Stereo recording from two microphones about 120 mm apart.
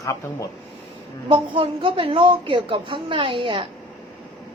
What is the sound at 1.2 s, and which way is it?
A woman's voice, 45° right (ahead or behind).